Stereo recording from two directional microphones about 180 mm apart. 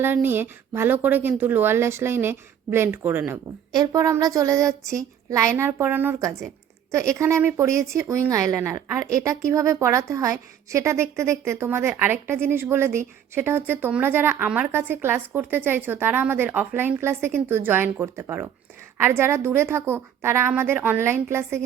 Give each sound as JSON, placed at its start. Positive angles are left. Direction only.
{"t": 0.0, "sound": "speech", "side_deg": -10}